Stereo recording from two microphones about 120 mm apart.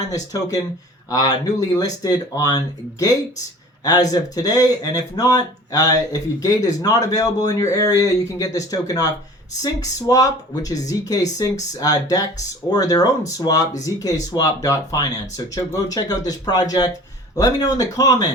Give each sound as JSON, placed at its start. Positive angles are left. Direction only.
{"t": 0.1, "sound": "speech", "side_deg": 30}